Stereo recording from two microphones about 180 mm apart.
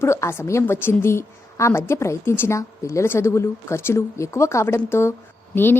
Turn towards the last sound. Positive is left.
turn(degrees=10)  # may be behind; listen again after turning